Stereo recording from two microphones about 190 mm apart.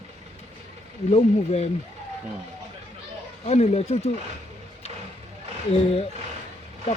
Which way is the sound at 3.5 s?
35° left (ahead or behind).